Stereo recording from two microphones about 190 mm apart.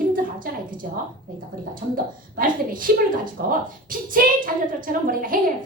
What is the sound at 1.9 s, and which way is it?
A woman's voice, 45° right (ahead or behind).